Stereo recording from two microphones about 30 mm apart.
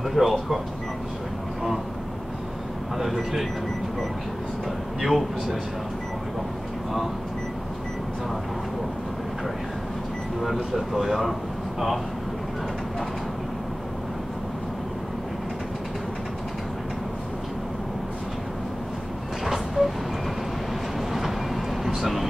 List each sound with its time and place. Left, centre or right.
0.0 s speech: centre
3.0 s a man's voice: centre
5.0 s a man's voice: centre
10.4 s speech: centre
19.4 s vehicle: centre
21.8 s vehicle: centre